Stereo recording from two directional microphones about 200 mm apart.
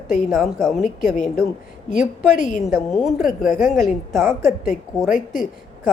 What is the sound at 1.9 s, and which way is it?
Speech, 40° left (ahead or behind).